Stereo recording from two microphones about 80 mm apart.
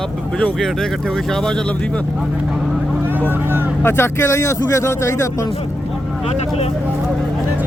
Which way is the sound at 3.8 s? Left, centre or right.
Left.